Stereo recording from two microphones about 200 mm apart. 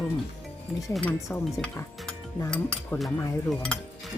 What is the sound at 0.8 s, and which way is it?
Speech, centre (ahead or behind).